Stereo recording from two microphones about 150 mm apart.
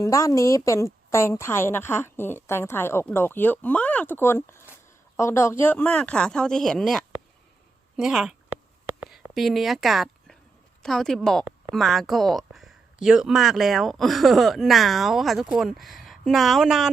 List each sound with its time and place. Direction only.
0.0 s a woman's voice: 20° left (ahead or behind); by 16.9 s 5° right (ahead or behind)